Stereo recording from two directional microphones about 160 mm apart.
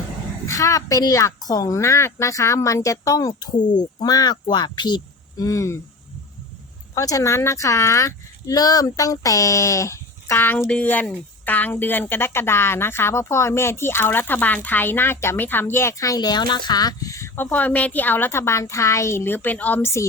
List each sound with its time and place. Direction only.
0.4 s a woman's voice: 20° left (ahead or behind)
6.9 s speech: 20° left (ahead or behind)